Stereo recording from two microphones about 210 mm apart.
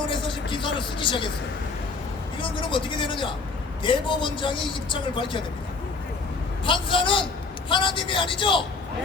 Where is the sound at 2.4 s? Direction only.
25° left (ahead or behind).